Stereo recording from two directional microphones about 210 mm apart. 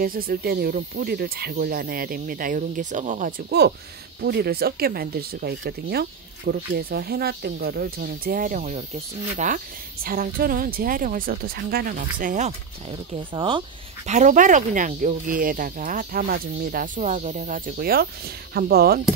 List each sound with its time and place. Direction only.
0.0 s speech: 45° right (ahead or behind)
3.4 s speech: 50° right (ahead or behind)